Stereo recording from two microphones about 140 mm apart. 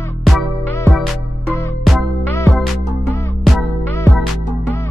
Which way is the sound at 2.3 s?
20° left (ahead or behind).